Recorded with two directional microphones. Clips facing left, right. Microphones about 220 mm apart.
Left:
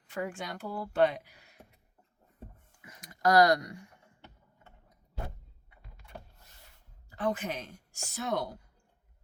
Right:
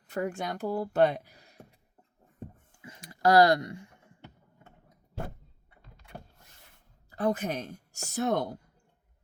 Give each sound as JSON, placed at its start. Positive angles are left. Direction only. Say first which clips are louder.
{"t": 0.1, "sound": "speech", "louder": "right 4 dB", "side_deg": -40}
{"t": 2.8, "sound": "a sound", "louder": "right 3 dB", "side_deg": -30}
{"t": 7.2, "sound": "speech", "louder": "right 4 dB", "side_deg": -40}